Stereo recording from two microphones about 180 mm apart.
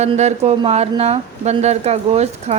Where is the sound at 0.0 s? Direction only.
40° right (ahead or behind).